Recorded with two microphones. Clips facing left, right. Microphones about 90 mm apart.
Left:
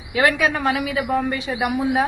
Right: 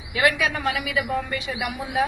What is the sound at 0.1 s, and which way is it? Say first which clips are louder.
A woman's voice: left 3 dB; 35° left (ahead or behind).